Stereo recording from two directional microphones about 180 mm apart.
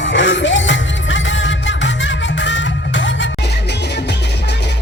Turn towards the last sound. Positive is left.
turn(degrees=90)